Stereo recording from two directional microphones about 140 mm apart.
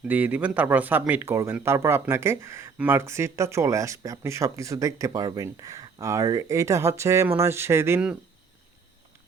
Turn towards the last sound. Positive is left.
turn(degrees=-15)  # may be behind; listen again after turning